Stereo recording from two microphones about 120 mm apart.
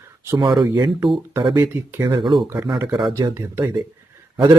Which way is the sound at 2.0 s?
40° right (ahead or behind).